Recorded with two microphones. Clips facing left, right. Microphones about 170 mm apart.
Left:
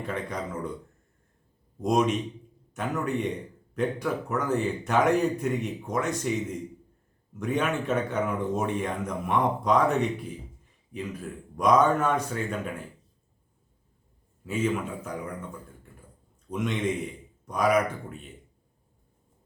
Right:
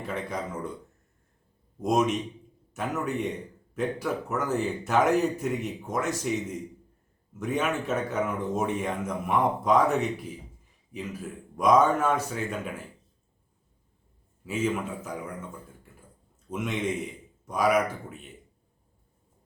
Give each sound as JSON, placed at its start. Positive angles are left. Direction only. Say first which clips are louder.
{"t": 0.0, "sound": "a man's voice", "louder": "even", "side_deg": -5}
{"t": 1.8, "sound": "a man's voice", "louder": "left 1 dB", "side_deg": -5}
{"t": 14.4, "sound": "a man's voice", "louder": "left 1 dB", "side_deg": -5}
{"t": 16.5, "sound": "a man's voice", "louder": "left 1 dB", "side_deg": -5}